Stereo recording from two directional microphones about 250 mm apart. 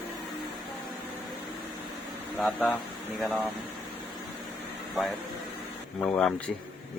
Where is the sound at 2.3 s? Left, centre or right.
Centre.